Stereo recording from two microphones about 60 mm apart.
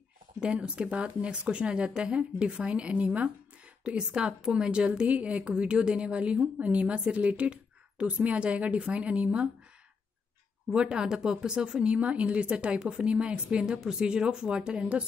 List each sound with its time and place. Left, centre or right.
0.4 s speech: centre
10.7 s speech: centre